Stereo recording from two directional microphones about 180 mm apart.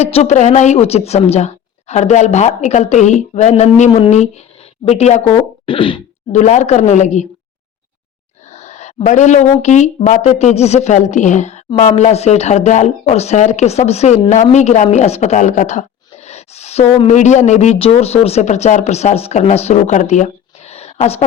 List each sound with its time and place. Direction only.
0.0 s a woman's voice: 40° left (ahead or behind)
5.6 s a sound: 30° left (ahead or behind)
6.3 s a woman's voice: 40° left (ahead or behind)
8.4 s a woman's voice: 40° left (ahead or behind)